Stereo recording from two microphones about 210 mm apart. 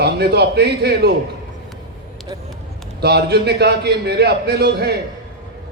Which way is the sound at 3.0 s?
50° right (ahead or behind).